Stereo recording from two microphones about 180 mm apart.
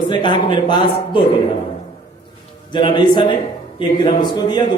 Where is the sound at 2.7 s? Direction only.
25° left (ahead or behind).